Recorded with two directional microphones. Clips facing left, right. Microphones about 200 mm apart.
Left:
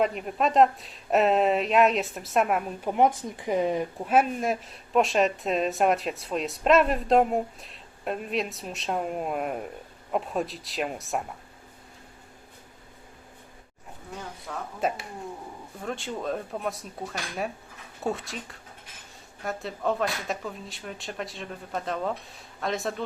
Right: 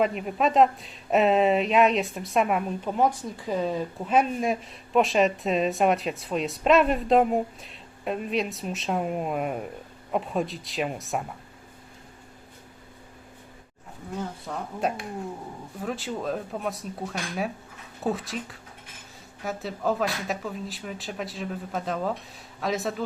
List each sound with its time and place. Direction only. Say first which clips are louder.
0.0 s speech: right 1 dB; centre (ahead or behind)
2.9 s speech: left 2 dB; 20° left (ahead or behind)
4.1 s speech: even; 5° left (ahead or behind)
14.4 s speech: left 1 dB; centre (ahead or behind)